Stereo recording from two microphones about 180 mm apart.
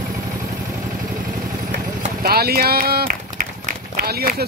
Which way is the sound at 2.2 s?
60° right (ahead or behind).